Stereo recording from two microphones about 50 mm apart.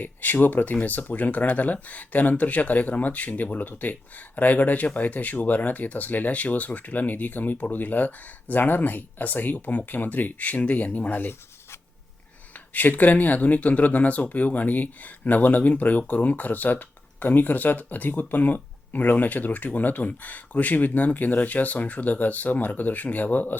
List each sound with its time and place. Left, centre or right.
0.0 s speech: left
13.0 s speech: left